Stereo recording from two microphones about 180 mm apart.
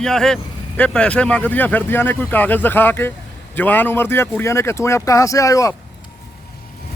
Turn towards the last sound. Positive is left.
turn(degrees=20)  # may be behind; listen again after turning